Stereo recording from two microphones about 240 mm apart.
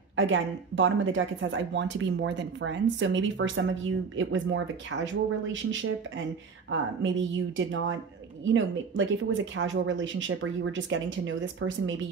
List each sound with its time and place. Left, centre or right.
0.1 s speech: right